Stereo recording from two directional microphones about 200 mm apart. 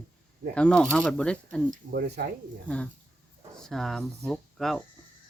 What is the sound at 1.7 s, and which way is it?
Speech, 50° right (ahead or behind).